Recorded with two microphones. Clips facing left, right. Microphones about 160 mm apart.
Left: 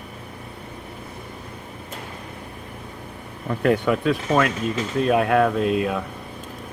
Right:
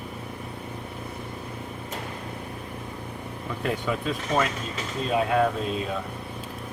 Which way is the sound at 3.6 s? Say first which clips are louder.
Left 8 dB; 65° left (ahead or behind).